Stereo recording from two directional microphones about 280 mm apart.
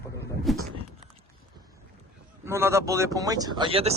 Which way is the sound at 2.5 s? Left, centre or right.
Centre.